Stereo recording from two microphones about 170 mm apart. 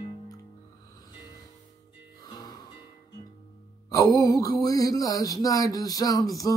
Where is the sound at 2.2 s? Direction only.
25° left (ahead or behind).